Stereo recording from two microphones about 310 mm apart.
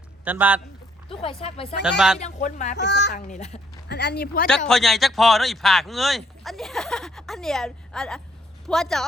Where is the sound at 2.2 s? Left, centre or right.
Left.